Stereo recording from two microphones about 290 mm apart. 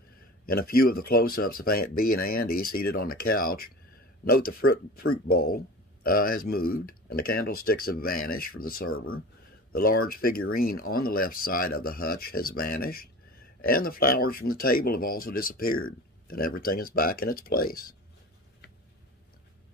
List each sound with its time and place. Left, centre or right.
0.5 s speech: left